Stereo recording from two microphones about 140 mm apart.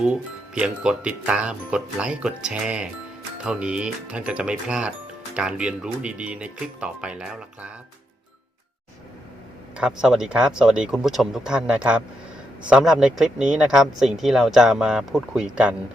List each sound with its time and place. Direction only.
0.0 s speech: 5° right (ahead or behind)
9.7 s speech: 5° right (ahead or behind)